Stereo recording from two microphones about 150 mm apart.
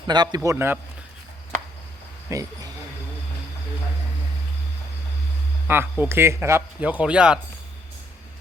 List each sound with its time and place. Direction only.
0.1 s a man's voice: 30° right (ahead or behind)
0.5 s a man's voice: 15° right (ahead or behind)
2.3 s a man's voice: 20° right (ahead or behind)
5.6 s a man's voice: 15° right (ahead or behind)